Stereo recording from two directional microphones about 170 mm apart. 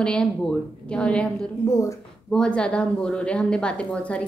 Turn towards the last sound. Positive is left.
turn(degrees=5)  # may be behind; listen again after turning